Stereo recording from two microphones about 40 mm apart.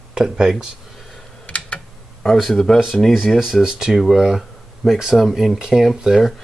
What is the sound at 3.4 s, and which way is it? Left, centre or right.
Speech, centre.